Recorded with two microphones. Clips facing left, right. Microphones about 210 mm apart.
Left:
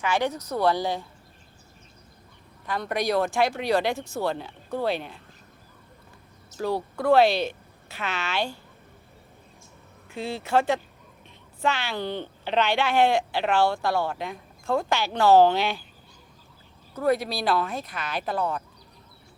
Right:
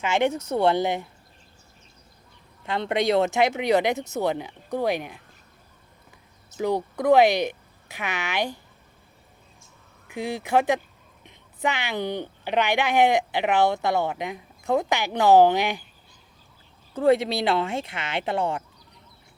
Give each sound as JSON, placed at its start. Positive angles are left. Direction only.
{"t": 0.0, "sound": "speech", "side_deg": -25}
{"t": 2.6, "sound": "speech", "side_deg": -25}
{"t": 6.6, "sound": "speech", "side_deg": -20}
{"t": 10.1, "sound": "a woman's voice", "side_deg": -15}
{"t": 16.9, "sound": "speech", "side_deg": -25}